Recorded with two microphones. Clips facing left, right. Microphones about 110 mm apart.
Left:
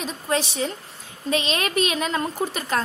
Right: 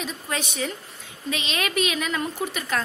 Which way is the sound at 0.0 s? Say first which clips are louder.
Left 5 dB; 30° left (ahead or behind).